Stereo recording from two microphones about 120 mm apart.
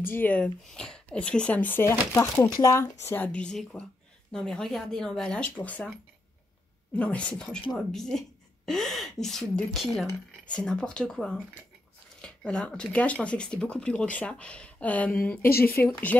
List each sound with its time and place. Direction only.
0.0 s a woman's voice: 15° left (ahead or behind)
7.0 s a woman's voice: 10° left (ahead or behind)